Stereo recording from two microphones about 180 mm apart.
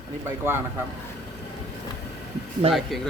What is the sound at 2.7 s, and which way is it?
Speech, centre (ahead or behind).